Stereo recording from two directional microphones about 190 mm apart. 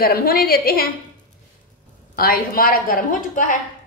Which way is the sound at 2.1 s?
50° left (ahead or behind).